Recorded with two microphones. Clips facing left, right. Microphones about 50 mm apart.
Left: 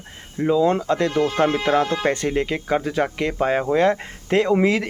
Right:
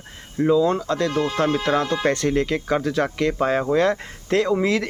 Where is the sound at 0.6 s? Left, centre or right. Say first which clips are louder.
Left 2 dB; left.